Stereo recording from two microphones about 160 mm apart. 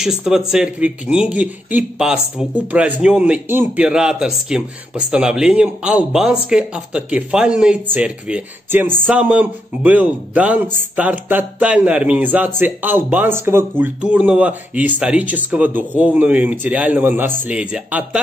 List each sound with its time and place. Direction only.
0.0 s speech: 5° right (ahead or behind)